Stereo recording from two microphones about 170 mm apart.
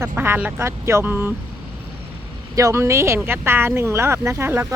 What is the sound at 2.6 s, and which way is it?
Speech, 15° right (ahead or behind).